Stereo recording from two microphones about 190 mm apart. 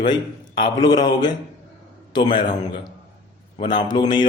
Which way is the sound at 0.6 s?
25° left (ahead or behind).